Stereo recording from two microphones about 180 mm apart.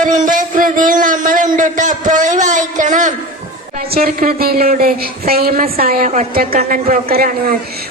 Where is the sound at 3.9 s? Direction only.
50° right (ahead or behind).